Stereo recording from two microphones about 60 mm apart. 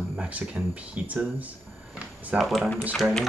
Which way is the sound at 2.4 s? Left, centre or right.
Centre.